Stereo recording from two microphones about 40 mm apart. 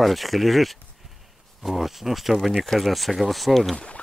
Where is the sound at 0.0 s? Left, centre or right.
Centre.